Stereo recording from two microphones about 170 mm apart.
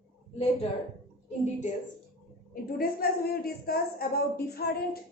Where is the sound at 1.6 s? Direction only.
45° left (ahead or behind).